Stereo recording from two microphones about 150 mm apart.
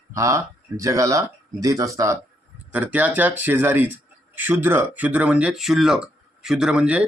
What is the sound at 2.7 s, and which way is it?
Speech, 10° right (ahead or behind).